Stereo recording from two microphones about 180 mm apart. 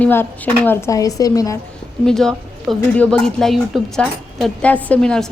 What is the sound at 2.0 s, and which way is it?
A woman's voice, centre (ahead or behind).